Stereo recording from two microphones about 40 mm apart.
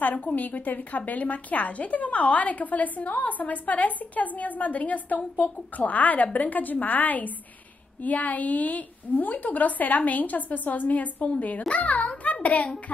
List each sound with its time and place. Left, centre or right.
0.0 s a woman's voice: left